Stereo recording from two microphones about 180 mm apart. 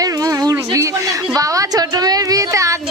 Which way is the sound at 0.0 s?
20° right (ahead or behind).